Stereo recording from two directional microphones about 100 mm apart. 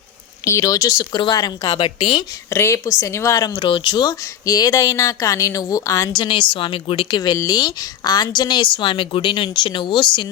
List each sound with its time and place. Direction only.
0.4 s a woman's voice: 30° left (ahead or behind)
1.7 s a woman's voice: 60° left (ahead or behind)
2.5 s a woman's voice: 30° left (ahead or behind)
3.4 s speech: 40° left (ahead or behind)
3.7 s speech: 50° left (ahead or behind); by 6.1 s 35° left (ahead or behind)
6.1 s a woman's voice: 55° left (ahead or behind)